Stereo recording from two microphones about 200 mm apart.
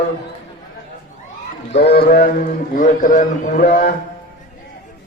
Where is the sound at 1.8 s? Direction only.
50° left (ahead or behind).